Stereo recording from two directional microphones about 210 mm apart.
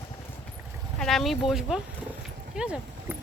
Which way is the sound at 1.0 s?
Centre (ahead or behind).